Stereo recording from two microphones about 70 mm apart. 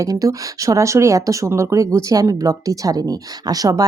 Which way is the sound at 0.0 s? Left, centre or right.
Right.